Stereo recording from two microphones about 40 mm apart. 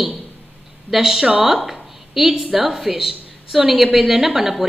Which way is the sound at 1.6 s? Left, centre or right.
Centre.